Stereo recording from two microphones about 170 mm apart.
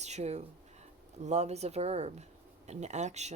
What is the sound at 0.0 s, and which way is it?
Speech, 40° right (ahead or behind).